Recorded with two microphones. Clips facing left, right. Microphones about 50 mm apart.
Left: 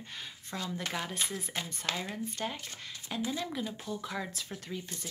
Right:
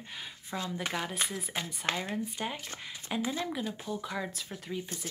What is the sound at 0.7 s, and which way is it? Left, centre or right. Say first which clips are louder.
Speech: right 1 dB; centre.